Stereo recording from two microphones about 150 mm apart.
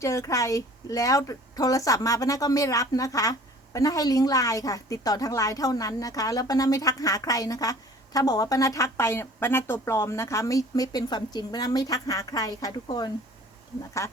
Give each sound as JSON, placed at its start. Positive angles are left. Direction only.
{"t": 0.0, "sound": "a woman's voice", "side_deg": 20}